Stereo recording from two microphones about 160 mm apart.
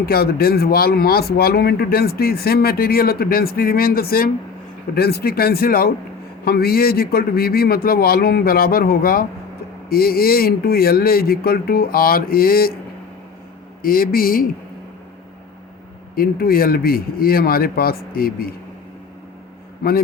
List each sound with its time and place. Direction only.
0.0 s speech: 70° left (ahead or behind)
13.8 s a man's voice: 65° left (ahead or behind)
16.1 s speech: 65° left (ahead or behind)
19.8 s speech: 75° left (ahead or behind)